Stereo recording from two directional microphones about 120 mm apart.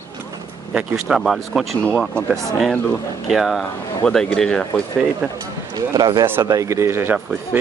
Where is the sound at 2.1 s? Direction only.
20° right (ahead or behind).